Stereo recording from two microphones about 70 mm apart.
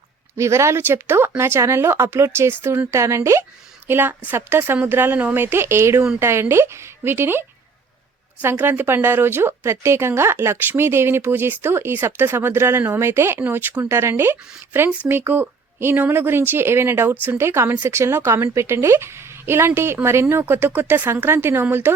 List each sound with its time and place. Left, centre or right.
0.3 s speech: right
3.8 s speech: right